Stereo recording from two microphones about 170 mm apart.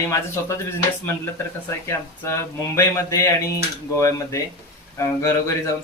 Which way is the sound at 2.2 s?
15° left (ahead or behind).